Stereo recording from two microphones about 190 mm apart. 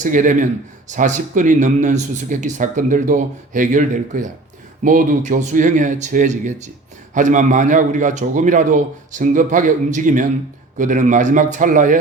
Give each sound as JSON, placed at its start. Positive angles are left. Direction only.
{"t": 0.0, "sound": "speech", "side_deg": -45}